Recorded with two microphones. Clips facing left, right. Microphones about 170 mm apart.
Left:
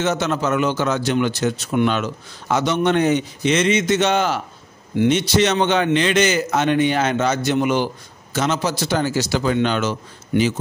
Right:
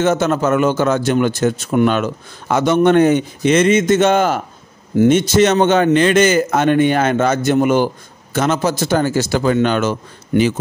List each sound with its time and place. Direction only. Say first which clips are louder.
0.0 s a man's voice: right 5 dB; 50° right (ahead or behind)